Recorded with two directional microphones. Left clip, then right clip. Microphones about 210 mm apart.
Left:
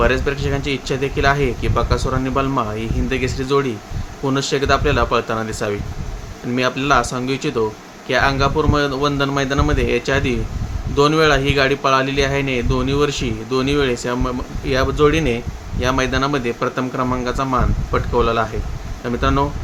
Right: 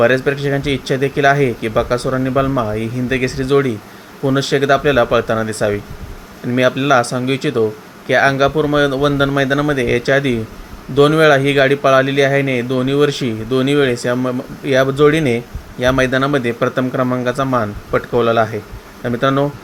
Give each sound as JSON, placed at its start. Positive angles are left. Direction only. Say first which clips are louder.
{"t": 0.0, "sound": "speech", "louder": "right 4 dB", "side_deg": -15}